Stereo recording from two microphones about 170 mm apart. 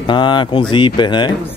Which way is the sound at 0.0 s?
25° left (ahead or behind).